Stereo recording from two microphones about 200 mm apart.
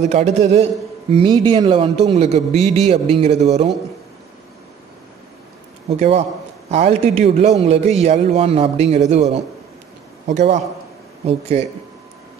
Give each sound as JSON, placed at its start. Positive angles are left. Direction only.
{"t": 0.0, "sound": "a man's voice", "side_deg": -35}
{"t": 5.9, "sound": "a man's voice", "side_deg": -30}